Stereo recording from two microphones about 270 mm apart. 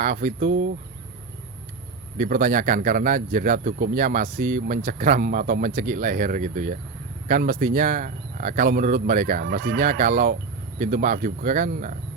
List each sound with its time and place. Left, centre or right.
0.0 s speech: right
2.1 s speech: right